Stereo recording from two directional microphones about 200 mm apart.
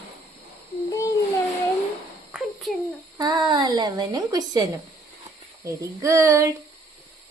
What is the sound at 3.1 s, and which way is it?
A woman's voice, 20° right (ahead or behind).